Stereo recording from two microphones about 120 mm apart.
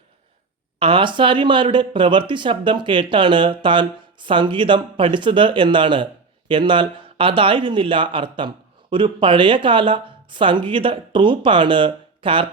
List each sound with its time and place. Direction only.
0.8 s speech: 45° right (ahead or behind)